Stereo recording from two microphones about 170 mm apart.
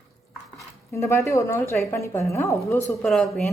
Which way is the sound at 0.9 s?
15° left (ahead or behind).